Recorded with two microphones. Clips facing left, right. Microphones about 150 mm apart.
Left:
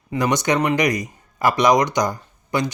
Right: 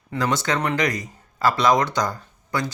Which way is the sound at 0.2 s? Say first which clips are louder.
Left 4 dB; 20° left (ahead or behind).